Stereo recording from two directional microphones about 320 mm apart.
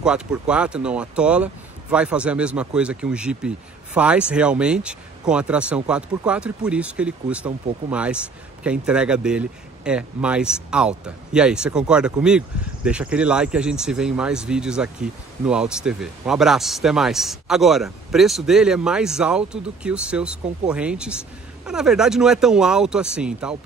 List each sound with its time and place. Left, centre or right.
0.0 s speech: centre